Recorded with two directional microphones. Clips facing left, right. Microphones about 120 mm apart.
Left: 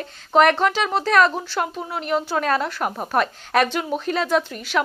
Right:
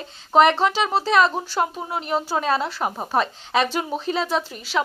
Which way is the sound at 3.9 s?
35° right (ahead or behind).